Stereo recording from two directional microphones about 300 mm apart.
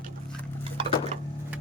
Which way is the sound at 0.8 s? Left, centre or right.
Centre.